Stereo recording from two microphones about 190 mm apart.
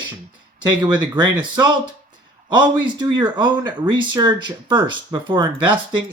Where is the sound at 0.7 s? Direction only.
20° right (ahead or behind).